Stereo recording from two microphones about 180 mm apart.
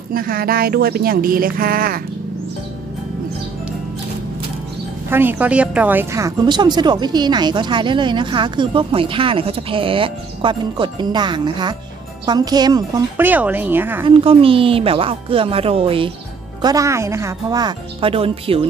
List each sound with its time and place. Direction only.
0.1 s speech: 55° right (ahead or behind)
5.1 s a woman's voice: 10° right (ahead or behind)
13.2 s a woman's voice: 10° right (ahead or behind)
14.0 s speech: 30° right (ahead or behind)
16.6 s a woman's voice: 15° right (ahead or behind)